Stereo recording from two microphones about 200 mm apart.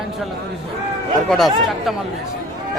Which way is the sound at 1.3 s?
Centre (ahead or behind).